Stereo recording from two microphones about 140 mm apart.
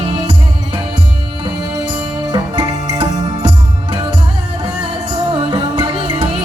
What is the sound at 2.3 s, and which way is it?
Music, 30° right (ahead or behind).